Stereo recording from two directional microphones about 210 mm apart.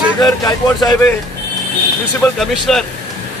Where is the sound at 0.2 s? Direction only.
15° left (ahead or behind).